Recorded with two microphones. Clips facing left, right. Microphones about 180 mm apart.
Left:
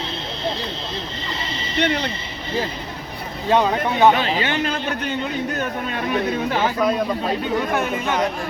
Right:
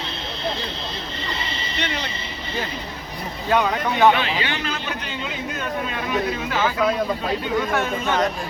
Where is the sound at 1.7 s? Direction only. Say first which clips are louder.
Left 8 dB; 55° left (ahead or behind).